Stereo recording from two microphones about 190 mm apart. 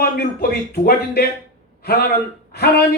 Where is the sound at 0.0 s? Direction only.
55° left (ahead or behind).